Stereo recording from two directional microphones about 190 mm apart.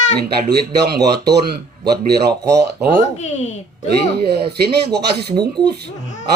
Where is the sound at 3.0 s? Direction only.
35° left (ahead or behind).